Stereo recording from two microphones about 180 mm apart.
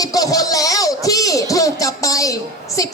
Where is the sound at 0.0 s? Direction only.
20° left (ahead or behind).